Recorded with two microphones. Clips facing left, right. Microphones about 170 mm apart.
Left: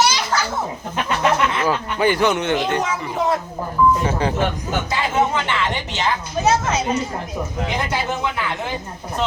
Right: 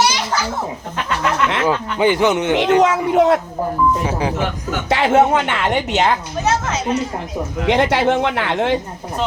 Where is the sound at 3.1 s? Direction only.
75° right (ahead or behind).